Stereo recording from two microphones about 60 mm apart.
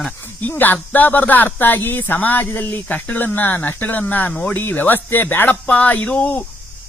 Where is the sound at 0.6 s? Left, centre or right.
Left.